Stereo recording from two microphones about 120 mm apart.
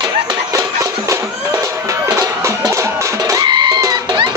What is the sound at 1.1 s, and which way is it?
Music, 25° right (ahead or behind).